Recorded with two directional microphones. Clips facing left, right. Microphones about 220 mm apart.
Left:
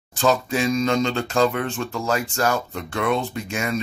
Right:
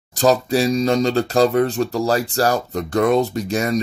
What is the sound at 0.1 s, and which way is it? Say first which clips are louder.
Speech: right 4 dB; 35° right (ahead or behind).